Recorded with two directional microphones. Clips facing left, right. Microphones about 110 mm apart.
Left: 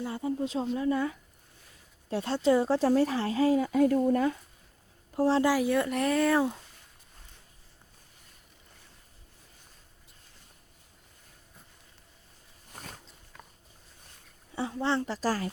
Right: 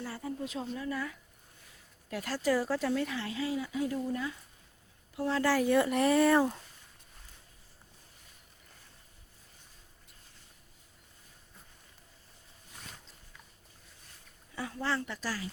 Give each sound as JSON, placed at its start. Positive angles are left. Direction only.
{"t": 0.0, "sound": "a woman's voice", "side_deg": 20}
{"t": 5.1, "sound": "speech", "side_deg": 35}
{"t": 5.4, "sound": "speech", "side_deg": 15}
{"t": 5.6, "sound": "speech", "side_deg": 0}
{"t": 12.7, "sound": "a sound", "side_deg": 50}
{"t": 14.5, "sound": "a woman's voice", "side_deg": 25}